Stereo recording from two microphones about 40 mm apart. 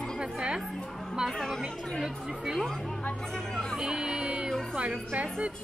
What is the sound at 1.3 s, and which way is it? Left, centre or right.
Speech, centre.